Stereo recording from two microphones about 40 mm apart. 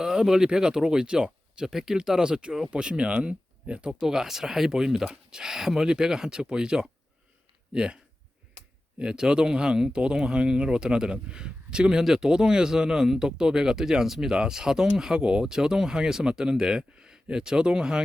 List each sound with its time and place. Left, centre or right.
0.0 s speech: centre
3.8 s speech: centre
9.0 s speech: right